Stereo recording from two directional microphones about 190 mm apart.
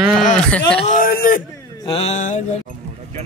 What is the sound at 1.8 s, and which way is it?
Mantra, 30° left (ahead or behind).